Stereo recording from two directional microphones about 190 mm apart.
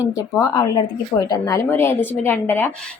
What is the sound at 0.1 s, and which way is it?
A woman's voice, 20° left (ahead or behind).